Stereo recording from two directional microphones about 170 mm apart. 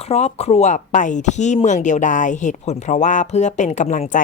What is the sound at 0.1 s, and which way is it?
Speech, 40° left (ahead or behind).